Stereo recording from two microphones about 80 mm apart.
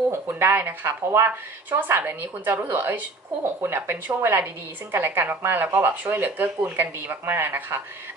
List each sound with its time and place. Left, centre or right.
0.4 s a woman's voice: right